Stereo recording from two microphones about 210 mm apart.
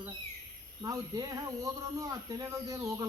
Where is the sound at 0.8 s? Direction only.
20° right (ahead or behind).